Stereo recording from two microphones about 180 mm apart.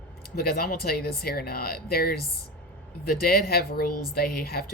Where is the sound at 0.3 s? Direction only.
55° left (ahead or behind).